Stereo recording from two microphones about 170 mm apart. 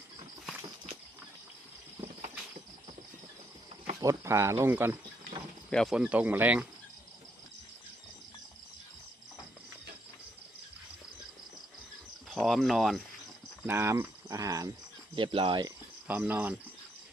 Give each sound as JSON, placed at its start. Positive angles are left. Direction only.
{"t": 4.0, "sound": "speech", "side_deg": -15}
{"t": 5.7, "sound": "speech", "side_deg": 0}
{"t": 12.3, "sound": "speech", "side_deg": 0}
{"t": 13.7, "sound": "speech", "side_deg": -15}
{"t": 15.1, "sound": "speech", "side_deg": -30}
{"t": 16.0, "sound": "speech", "side_deg": -10}